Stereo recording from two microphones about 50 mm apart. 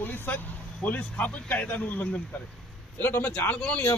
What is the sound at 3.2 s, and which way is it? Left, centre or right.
Speech, left.